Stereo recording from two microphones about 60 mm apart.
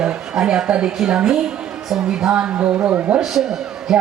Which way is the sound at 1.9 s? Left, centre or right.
Centre.